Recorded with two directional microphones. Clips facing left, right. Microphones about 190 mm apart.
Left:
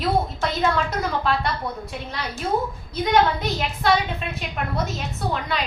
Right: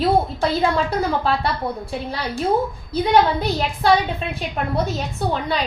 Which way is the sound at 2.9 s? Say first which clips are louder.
Right 3 dB; 30° right (ahead or behind).